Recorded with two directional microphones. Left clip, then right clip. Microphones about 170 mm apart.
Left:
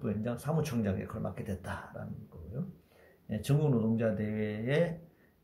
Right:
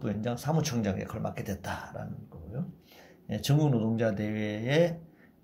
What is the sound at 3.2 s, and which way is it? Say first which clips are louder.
Speech: right 3 dB; 20° right (ahead or behind).